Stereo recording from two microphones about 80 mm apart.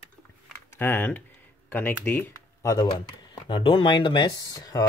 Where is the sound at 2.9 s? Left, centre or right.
Left.